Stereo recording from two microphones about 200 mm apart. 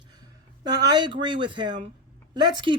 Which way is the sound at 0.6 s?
20° right (ahead or behind).